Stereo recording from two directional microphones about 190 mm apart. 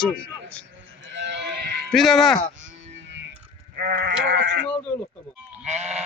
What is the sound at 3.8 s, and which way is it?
Sheep, 50° right (ahead or behind).